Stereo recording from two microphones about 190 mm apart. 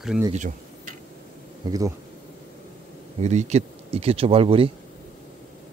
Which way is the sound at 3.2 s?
35° right (ahead or behind).